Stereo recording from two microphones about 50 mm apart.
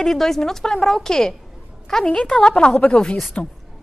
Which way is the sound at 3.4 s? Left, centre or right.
Left.